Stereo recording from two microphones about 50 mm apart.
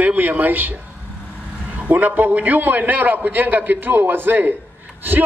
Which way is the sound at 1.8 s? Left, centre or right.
Right.